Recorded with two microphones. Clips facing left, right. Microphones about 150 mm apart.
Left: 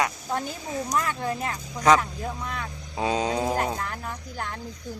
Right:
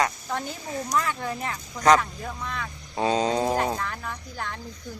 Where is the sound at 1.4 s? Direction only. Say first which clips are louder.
Even; 10° left (ahead or behind).